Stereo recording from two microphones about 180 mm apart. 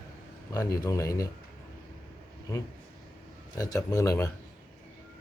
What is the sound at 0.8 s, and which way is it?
Speech, 15° left (ahead or behind).